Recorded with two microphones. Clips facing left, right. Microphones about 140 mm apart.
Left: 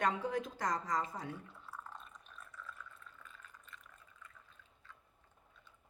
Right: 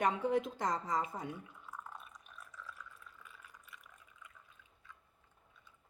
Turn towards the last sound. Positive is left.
turn(degrees=-10)  # may be behind; listen again after turning